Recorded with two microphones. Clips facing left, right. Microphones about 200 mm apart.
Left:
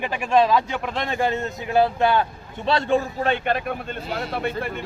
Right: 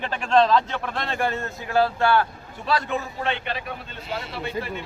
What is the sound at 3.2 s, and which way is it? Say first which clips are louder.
A man's voice: left 6 dB; 45° left (ahead or behind).